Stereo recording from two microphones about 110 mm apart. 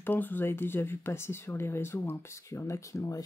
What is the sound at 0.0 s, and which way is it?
Speech, 15° left (ahead or behind).